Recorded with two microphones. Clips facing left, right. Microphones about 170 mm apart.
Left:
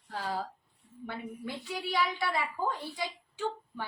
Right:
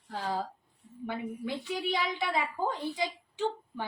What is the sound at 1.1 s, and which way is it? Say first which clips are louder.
A woman's voice: right 4 dB; 15° right (ahead or behind).